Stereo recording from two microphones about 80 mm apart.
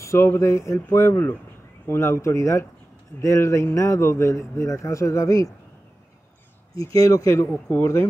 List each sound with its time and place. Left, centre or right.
0.0 s speech: left
6.8 s speech: left
7.7 s speech: left